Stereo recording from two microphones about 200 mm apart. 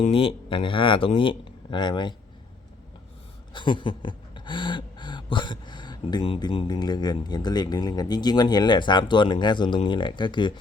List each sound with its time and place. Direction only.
0.0 s speech: 25° left (ahead or behind)
3.5 s speech: 25° left (ahead or behind)